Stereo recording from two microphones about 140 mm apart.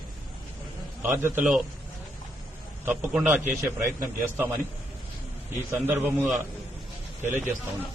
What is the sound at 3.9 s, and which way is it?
Speech, 20° right (ahead or behind).